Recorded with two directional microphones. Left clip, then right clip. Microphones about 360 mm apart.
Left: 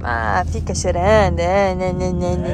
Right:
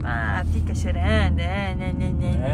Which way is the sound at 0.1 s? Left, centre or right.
Centre.